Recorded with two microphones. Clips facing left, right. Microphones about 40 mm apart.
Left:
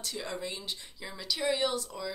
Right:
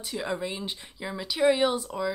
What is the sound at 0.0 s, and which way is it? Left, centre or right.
Speech, centre.